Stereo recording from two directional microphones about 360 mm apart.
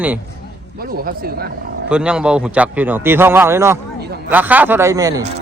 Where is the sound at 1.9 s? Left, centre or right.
Centre.